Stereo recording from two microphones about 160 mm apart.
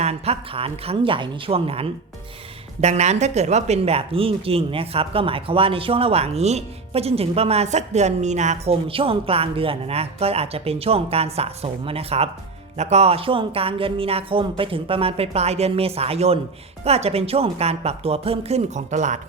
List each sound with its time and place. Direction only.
0.0 s speech: 40° right (ahead or behind)